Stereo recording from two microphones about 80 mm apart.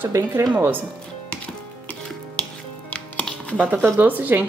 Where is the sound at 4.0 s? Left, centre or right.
Right.